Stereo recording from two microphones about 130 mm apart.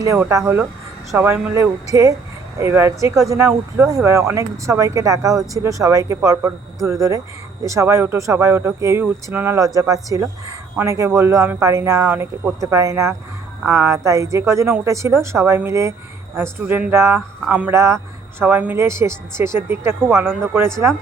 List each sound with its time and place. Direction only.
0.3 s speech: 20° right (ahead or behind)
17.2 s speech: 5° right (ahead or behind)
17.7 s speech: 20° right (ahead or behind)